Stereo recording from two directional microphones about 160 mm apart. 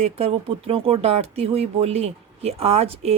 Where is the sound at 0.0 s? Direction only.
40° right (ahead or behind).